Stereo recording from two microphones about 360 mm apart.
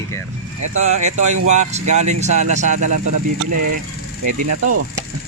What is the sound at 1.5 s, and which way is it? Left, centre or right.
Speech, centre.